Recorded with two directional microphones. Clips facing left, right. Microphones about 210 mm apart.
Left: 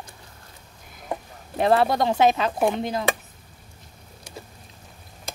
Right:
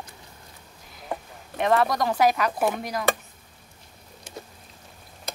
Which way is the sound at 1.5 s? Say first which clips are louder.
Left 3 dB; 30° left (ahead or behind).